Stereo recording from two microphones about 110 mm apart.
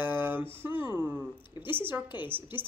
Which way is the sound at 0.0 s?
20° right (ahead or behind).